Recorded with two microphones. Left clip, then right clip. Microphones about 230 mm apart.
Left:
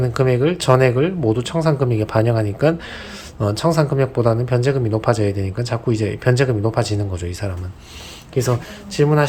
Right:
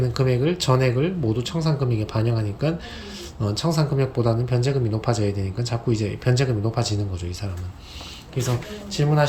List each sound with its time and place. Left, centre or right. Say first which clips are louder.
0.0 s speech: left 5 dB; centre